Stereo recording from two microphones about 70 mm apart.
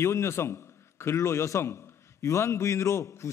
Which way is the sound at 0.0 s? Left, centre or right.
Left.